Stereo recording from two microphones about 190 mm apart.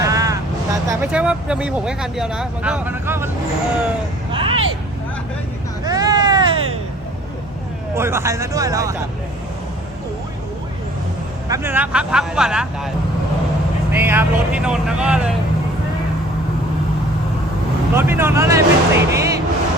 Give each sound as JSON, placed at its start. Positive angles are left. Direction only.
{"t": 0.0, "sound": "vehicle", "side_deg": -15}
{"t": 1.1, "sound": "speech", "side_deg": -5}
{"t": 4.3, "sound": "a sound", "side_deg": -30}
{"t": 5.8, "sound": "a sound", "side_deg": -20}
{"t": 7.9, "sound": "speech", "side_deg": -15}
{"t": 11.4, "sound": "speech", "side_deg": -15}
{"t": 13.9, "sound": "speech", "side_deg": -10}
{"t": 17.9, "sound": "speech", "side_deg": -10}